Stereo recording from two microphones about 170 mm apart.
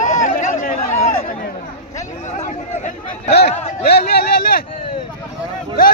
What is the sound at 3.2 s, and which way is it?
Speech, 70° left (ahead or behind).